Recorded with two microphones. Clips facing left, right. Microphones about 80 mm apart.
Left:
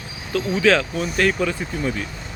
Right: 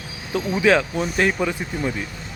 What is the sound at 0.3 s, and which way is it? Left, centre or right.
Speech, centre.